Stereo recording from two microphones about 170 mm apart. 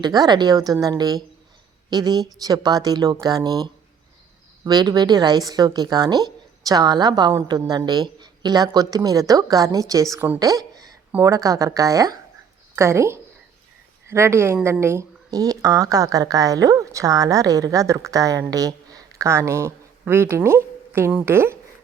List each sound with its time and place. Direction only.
0.0 s a woman's voice: 25° right (ahead or behind)